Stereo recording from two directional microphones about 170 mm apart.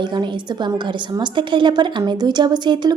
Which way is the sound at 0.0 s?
25° right (ahead or behind).